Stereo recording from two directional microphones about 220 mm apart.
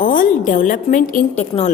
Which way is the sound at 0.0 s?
40° left (ahead or behind).